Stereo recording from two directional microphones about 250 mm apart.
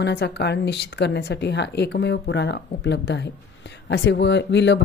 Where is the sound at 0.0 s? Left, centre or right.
Left.